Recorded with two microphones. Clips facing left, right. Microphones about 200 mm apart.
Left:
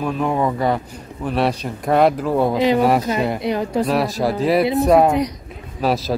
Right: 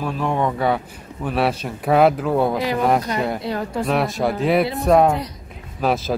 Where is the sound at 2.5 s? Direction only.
20° left (ahead or behind).